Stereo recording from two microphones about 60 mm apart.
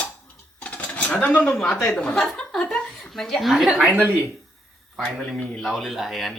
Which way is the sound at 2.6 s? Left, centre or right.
Centre.